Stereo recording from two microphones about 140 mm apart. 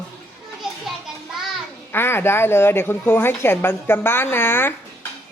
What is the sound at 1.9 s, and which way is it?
A woman's voice, 15° left (ahead or behind).